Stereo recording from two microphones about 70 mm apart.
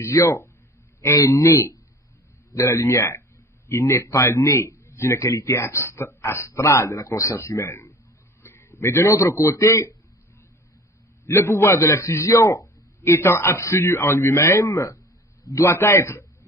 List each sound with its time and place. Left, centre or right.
0.0 s a man's voice: left
8.4 s a sound: left
9.5 s a man's voice: left
11.3 s a man's voice: left